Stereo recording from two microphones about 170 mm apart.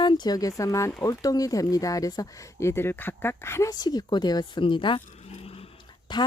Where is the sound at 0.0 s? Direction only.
25° left (ahead or behind).